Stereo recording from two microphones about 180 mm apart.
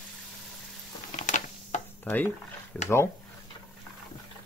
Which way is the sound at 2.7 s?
5° left (ahead or behind).